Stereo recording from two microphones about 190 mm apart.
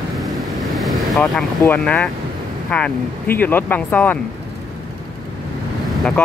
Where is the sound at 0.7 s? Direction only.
Centre (ahead or behind).